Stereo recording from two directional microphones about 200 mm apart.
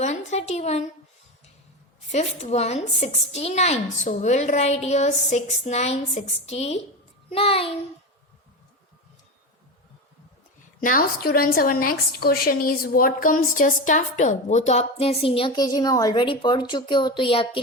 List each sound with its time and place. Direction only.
0.0 s a woman's voice: 35° left (ahead or behind)
2.1 s a woman's voice: 35° left (ahead or behind)
7.3 s child singing: 30° left (ahead or behind)
10.8 s a woman's voice: 45° left (ahead or behind); by 17.6 s 25° left (ahead or behind)